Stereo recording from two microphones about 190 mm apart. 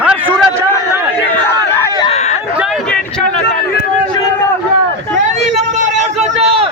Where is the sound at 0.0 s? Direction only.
5° right (ahead or behind).